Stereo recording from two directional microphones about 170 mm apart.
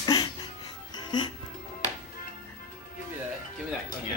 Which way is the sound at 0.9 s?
25° left (ahead or behind).